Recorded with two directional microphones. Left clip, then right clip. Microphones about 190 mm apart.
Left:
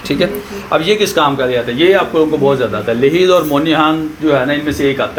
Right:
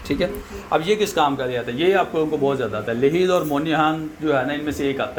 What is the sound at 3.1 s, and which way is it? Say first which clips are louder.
Speech: left 9 dB; 45° right (ahead or behind).